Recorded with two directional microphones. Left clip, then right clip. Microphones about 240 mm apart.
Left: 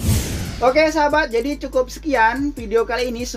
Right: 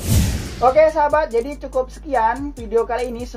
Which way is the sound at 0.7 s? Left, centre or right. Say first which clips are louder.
Right 2 dB; left.